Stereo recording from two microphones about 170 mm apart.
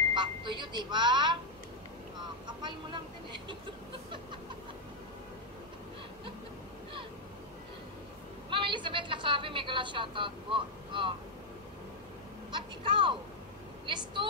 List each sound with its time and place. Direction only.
0.1 s a sound: 30° right (ahead or behind)
2.4 s speech: 25° right (ahead or behind)
8.5 s a woman's voice: 30° right (ahead or behind)
12.4 s a woman's voice: 30° right (ahead or behind)